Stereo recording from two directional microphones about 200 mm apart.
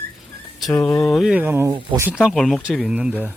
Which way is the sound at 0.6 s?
Centre (ahead or behind).